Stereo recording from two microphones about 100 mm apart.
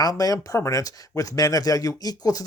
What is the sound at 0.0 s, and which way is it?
Speech, 40° left (ahead or behind).